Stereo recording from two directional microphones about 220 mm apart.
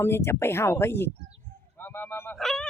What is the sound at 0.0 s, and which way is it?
Speech, 10° left (ahead or behind).